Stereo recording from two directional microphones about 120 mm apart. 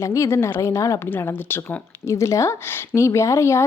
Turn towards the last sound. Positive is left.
turn(degrees=25)  # may be behind; listen again after turning